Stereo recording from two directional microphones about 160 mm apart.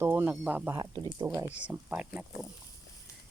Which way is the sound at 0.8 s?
25° right (ahead or behind).